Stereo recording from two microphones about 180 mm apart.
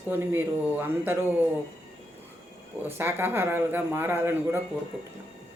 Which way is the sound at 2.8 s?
10° right (ahead or behind).